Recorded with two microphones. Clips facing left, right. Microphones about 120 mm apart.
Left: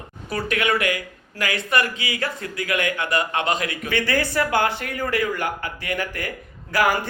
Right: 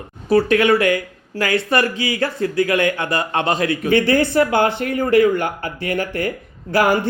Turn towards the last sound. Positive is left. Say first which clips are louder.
# right 4 dB
turn(degrees=-25)  # may be behind; listen again after turning